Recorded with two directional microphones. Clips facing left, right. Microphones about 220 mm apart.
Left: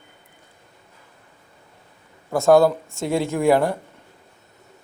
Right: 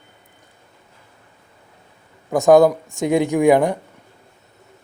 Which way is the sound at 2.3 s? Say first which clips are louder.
Right 3 dB; 15° right (ahead or behind).